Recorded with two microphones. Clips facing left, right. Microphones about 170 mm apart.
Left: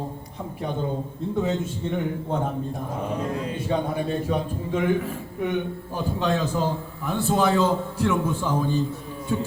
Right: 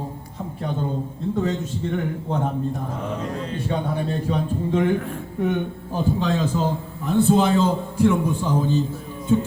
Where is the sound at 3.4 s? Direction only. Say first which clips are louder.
Even; 10° left (ahead or behind).